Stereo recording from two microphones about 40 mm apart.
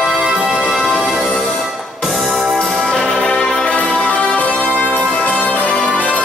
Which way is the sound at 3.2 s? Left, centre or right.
Left.